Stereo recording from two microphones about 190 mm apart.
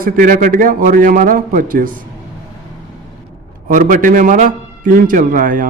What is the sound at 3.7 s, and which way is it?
A man's voice, 45° right (ahead or behind).